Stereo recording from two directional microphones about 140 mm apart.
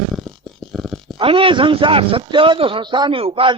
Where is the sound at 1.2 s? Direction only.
40° right (ahead or behind).